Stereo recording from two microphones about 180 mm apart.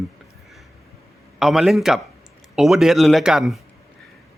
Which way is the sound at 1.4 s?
Centre (ahead or behind).